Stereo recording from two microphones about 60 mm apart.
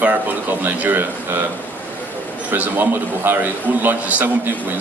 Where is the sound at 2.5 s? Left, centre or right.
Right.